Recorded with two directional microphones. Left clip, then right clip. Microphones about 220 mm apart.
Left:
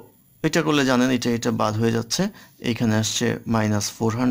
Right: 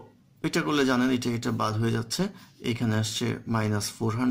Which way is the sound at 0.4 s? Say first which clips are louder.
Left 5 dB; 40° left (ahead or behind).